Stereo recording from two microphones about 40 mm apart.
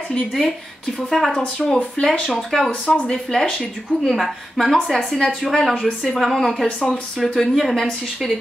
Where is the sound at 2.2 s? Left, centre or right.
Centre.